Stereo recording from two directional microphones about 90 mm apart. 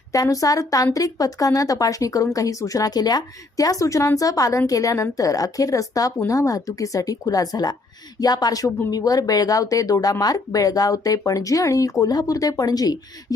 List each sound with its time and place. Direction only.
0.1 s speech: 40° left (ahead or behind)